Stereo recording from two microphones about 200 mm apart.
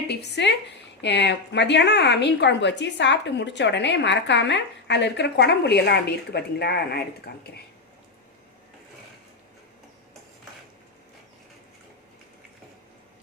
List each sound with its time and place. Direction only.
0.1 s a woman's voice: 60° left (ahead or behind)